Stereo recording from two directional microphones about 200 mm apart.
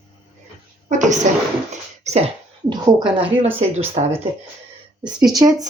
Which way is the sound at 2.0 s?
35° right (ahead or behind).